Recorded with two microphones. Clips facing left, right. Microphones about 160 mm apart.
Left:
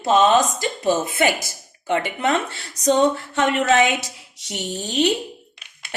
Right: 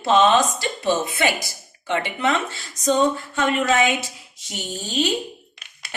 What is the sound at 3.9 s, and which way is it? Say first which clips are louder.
A woman's voice: right 1 dB; 70° left (ahead or behind).